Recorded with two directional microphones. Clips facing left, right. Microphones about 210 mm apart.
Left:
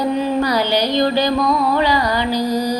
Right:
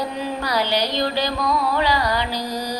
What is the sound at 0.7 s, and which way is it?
Music, 50° left (ahead or behind).